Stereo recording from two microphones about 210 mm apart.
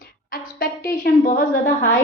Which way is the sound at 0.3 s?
45° left (ahead or behind).